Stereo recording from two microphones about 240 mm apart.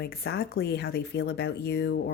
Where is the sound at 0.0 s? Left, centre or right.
Left.